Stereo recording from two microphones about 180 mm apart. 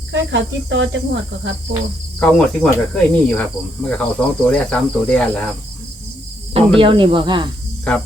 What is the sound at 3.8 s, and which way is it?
Speech, 5° left (ahead or behind).